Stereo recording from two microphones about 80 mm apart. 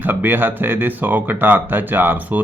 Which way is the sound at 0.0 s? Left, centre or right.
Right.